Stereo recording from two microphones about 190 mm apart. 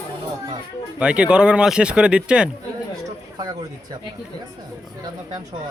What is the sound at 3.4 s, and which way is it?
Speech, 20° right (ahead or behind).